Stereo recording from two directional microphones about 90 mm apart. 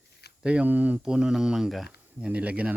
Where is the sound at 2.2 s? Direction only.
15° right (ahead or behind).